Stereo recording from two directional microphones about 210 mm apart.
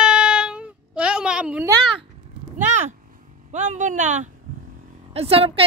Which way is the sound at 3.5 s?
35° right (ahead or behind).